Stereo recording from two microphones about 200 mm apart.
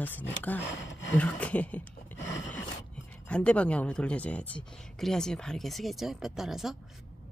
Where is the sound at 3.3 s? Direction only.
5° left (ahead or behind).